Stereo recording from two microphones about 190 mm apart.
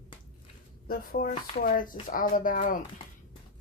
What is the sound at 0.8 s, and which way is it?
Speech, 50° left (ahead or behind).